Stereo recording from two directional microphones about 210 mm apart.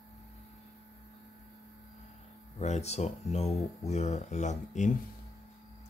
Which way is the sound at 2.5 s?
30° left (ahead or behind).